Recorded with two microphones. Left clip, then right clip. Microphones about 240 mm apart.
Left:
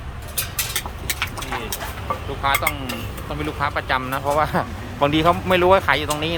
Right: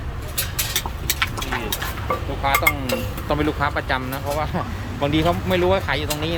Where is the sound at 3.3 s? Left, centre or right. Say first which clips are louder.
Right 3 dB; centre.